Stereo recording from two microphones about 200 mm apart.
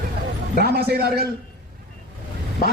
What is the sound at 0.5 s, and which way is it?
Speech, 50° right (ahead or behind).